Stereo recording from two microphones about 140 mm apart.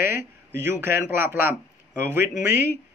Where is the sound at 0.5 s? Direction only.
15° right (ahead or behind).